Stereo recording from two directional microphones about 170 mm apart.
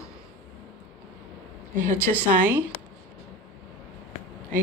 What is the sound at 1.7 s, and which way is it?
Speech, 50° right (ahead or behind).